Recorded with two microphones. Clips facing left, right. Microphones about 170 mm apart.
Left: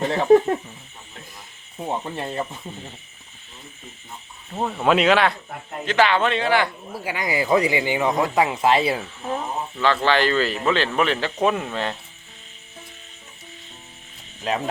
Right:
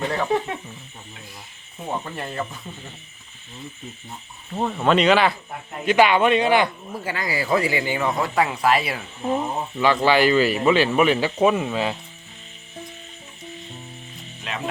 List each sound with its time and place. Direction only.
0.3 s a sound: 45° left (ahead or behind)
2.1 s speech: 25° left (ahead or behind)
4.5 s speech: 5° left (ahead or behind)
5.8 s speech: 15° right (ahead or behind)
6.9 s speech: 10° left (ahead or behind)
9.2 s speech: 15° right (ahead or behind)
14.5 s speech: 35° left (ahead or behind)